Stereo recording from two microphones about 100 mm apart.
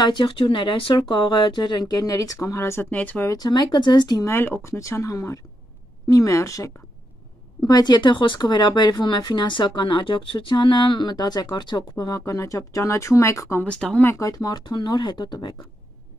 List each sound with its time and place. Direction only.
0.0 s speech: 55° left (ahead or behind); by 3.3 s 15° left (ahead or behind)
3.3 s speech: 40° left (ahead or behind)
4.3 s speech: 20° left (ahead or behind)
7.6 s speech: 45° left (ahead or behind)
11.9 s speech: 35° left (ahead or behind)
13.7 s speech: 10° left (ahead or behind)
14.0 s speech: 35° left (ahead or behind)